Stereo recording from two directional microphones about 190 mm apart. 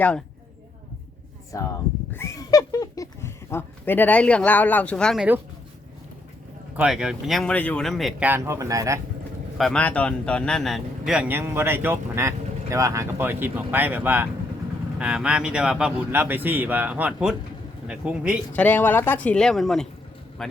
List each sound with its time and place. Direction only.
1.5 s speech: 15° left (ahead or behind)
6.7 s speech: 5° right (ahead or behind)
8.3 s speech: 15° right (ahead or behind)
9.6 s speech: 5° left (ahead or behind)
18.5 s speech: 10° left (ahead or behind)